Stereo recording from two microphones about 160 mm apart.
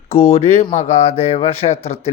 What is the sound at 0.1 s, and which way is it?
Speech, 40° left (ahead or behind).